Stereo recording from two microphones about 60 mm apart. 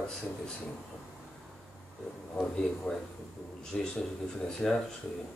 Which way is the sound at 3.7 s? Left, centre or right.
Centre.